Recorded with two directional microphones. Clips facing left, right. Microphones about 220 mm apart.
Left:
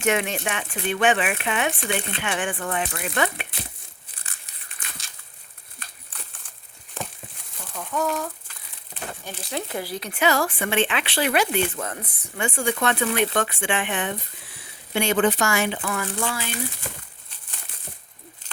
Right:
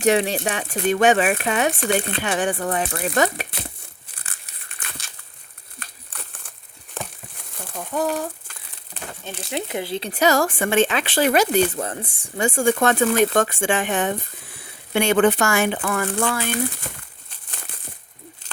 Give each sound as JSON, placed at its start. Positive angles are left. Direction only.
{"t": 0.0, "sound": "speech", "side_deg": -35}
{"t": 7.8, "sound": "speech", "side_deg": -35}
{"t": 9.2, "sound": "speech", "side_deg": -20}
{"t": 10.1, "sound": "speech", "side_deg": -40}
{"t": 12.5, "sound": "speech", "side_deg": -45}
{"t": 14.9, "sound": "speech", "side_deg": -60}